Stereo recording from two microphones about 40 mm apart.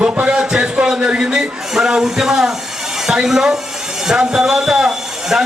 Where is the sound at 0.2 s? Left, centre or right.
Centre.